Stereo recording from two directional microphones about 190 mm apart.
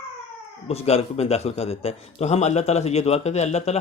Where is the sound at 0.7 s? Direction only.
30° left (ahead or behind).